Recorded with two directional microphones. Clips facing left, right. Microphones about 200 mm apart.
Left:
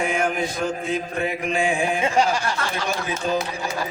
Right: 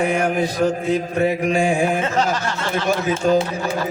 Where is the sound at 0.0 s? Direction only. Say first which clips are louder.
Right 4 dB; 35° right (ahead or behind).